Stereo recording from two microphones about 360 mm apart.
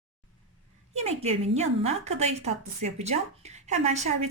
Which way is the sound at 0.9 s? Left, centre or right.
Centre.